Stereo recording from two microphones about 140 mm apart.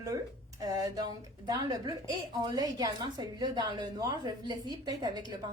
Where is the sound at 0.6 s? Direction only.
25° right (ahead or behind).